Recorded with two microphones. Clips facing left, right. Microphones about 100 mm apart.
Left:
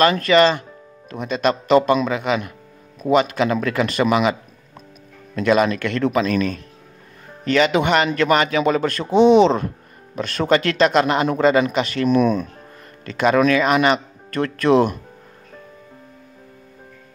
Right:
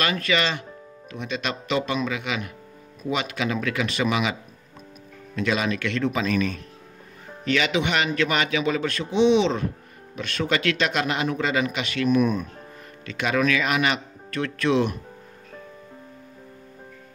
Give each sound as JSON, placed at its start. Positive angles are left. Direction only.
{"t": 0.0, "sound": "a man's voice", "side_deg": 40}
{"t": 5.4, "sound": "a man's voice", "side_deg": 50}
{"t": 7.4, "sound": "a man's voice", "side_deg": 45}
{"t": 12.1, "sound": "speech", "side_deg": 90}
{"t": 13.0, "sound": "a man's voice", "side_deg": 45}